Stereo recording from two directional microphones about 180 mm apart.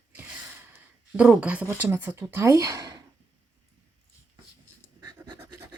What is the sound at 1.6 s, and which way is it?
Speech, 10° right (ahead or behind).